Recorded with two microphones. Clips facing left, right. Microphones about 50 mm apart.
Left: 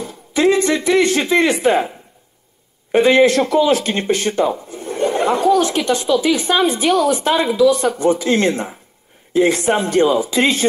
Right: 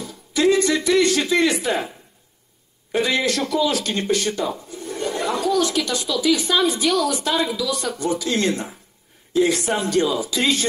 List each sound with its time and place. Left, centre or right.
0.0 s speech: left
2.9 s speech: left